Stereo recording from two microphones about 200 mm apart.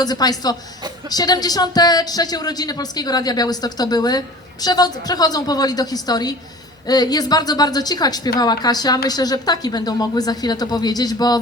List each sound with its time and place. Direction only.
0.0 s speech: 20° left (ahead or behind)